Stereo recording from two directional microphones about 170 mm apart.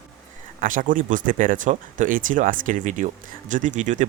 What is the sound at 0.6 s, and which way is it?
Speech, 50° right (ahead or behind).